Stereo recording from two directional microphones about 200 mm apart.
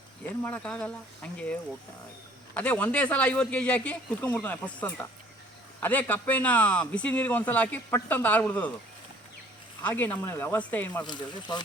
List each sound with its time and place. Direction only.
0.3 s speech: 10° left (ahead or behind)
2.6 s speech: 5° left (ahead or behind)
9.8 s speech: 10° left (ahead or behind)
11.0 s speech: 20° left (ahead or behind)